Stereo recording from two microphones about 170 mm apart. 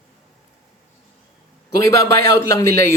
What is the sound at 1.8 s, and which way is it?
A man's voice, 15° left (ahead or behind).